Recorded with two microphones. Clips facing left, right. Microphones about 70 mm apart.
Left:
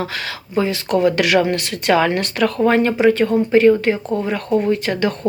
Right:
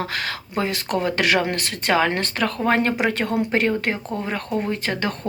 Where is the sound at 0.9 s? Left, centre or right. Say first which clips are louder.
Left 6 dB; right.